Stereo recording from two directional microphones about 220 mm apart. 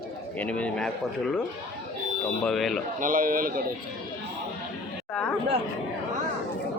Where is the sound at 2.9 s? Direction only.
35° right (ahead or behind).